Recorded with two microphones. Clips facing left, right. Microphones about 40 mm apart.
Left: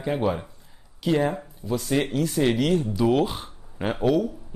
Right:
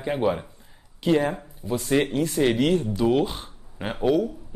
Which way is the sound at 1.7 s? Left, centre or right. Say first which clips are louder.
Right 2 dB; centre.